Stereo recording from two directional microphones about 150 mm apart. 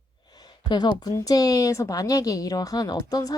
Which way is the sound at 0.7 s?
30° left (ahead or behind).